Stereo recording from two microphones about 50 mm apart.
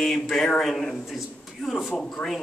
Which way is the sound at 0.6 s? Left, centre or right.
Centre.